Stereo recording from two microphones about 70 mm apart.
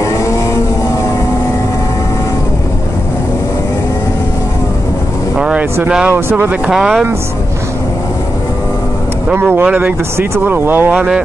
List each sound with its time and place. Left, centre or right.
5.4 s vehicle: centre
6.0 s speech: right
6.7 s speech: centre
9.3 s speech: right
10.1 s speech: right